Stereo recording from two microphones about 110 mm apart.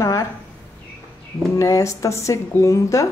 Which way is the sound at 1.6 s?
30° left (ahead or behind).